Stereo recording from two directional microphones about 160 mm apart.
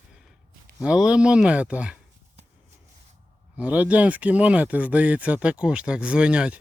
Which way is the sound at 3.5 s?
10° right (ahead or behind).